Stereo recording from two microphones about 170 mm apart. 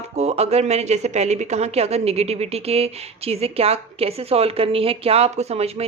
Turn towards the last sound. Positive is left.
turn(degrees=-35)  # may be behind; listen again after turning